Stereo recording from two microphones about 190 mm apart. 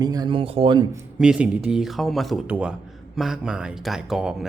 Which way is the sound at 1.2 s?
5° right (ahead or behind).